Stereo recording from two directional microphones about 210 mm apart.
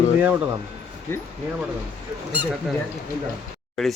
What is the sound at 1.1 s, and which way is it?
Speech, 10° left (ahead or behind).